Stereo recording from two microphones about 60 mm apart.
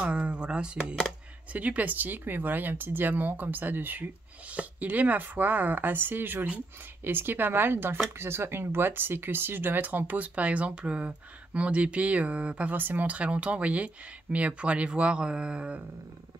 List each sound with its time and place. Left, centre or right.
0.0 s speech: centre
12.7 s speech: right